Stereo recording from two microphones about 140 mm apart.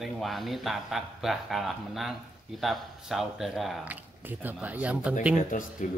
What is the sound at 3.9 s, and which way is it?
Speech, 10° right (ahead or behind).